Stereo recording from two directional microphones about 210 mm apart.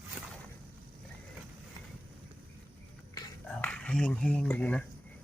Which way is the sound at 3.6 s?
5° left (ahead or behind).